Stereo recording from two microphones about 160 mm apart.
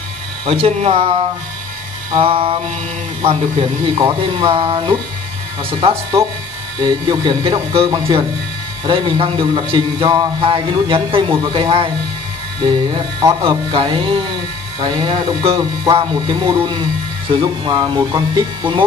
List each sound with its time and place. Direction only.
0.5 s a man's voice: 40° right (ahead or behind)
2.1 s a man's voice: 35° right (ahead or behind)
13.2 s a man's voice: 30° right (ahead or behind)